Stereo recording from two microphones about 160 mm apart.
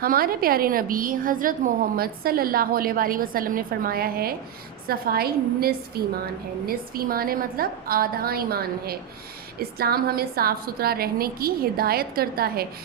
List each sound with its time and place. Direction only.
0.0 s a woman's voice: 65° right (ahead or behind)